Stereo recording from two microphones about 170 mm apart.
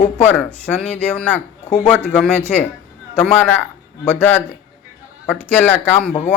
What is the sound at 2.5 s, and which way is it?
Speech, 5° left (ahead or behind).